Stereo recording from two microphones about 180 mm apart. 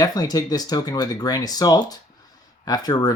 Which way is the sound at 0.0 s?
20° left (ahead or behind).